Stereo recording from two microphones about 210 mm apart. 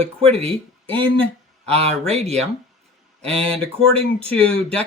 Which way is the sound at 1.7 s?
30° right (ahead or behind).